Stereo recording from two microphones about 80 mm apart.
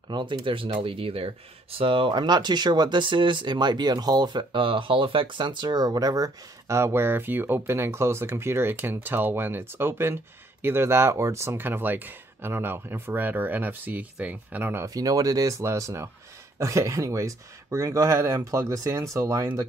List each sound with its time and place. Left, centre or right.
0.1 s speech: right
6.8 s speech: right
15.0 s speech: right